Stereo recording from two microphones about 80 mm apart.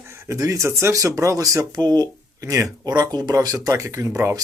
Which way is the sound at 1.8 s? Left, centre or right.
Right.